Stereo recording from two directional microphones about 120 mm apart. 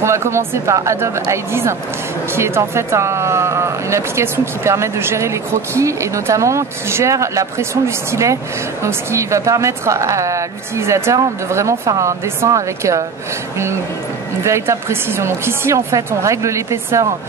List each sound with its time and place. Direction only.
0.0 s speech: 25° right (ahead or behind)
14.4 s speech: 25° right (ahead or behind)